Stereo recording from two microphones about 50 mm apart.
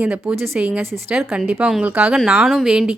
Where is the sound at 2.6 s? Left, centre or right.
Centre.